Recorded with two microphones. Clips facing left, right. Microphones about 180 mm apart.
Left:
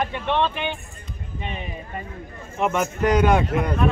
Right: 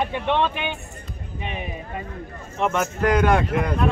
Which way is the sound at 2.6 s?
5° left (ahead or behind).